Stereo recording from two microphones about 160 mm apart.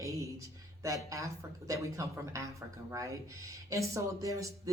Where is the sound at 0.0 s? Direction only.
20° right (ahead or behind).